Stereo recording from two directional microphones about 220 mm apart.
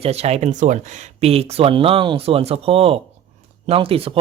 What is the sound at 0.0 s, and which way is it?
Speech, 30° right (ahead or behind).